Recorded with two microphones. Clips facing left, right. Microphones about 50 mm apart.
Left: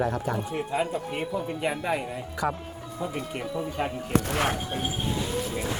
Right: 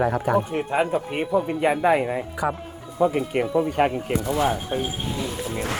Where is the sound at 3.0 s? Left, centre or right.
Right.